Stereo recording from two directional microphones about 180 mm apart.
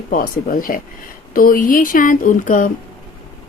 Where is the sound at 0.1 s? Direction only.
50° left (ahead or behind).